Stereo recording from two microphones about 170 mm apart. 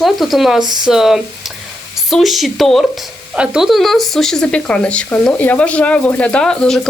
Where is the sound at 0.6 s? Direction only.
25° right (ahead or behind).